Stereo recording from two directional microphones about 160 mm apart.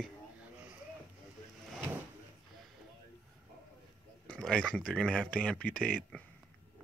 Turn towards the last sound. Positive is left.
turn(degrees=10)  # may be behind; listen again after turning